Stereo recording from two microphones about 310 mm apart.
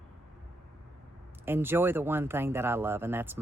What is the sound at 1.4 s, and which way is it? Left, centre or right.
Speech, centre.